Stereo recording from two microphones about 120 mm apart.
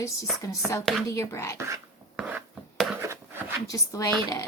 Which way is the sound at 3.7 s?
30° left (ahead or behind).